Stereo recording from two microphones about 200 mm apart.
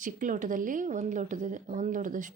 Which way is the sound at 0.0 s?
40° right (ahead or behind).